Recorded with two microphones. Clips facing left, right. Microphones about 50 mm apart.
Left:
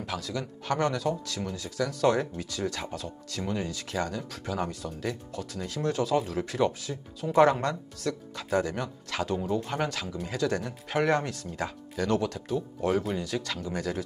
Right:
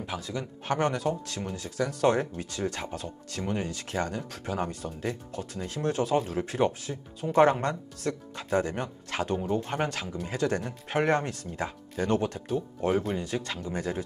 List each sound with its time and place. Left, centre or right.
0.0 s speech: centre